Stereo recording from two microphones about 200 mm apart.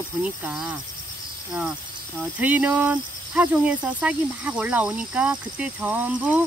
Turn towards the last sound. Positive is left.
turn(degrees=-5)  # may be behind; listen again after turning